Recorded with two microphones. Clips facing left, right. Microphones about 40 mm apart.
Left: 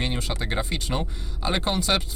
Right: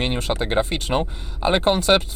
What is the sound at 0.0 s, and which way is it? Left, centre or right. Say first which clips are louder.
Speech: right 6 dB; right.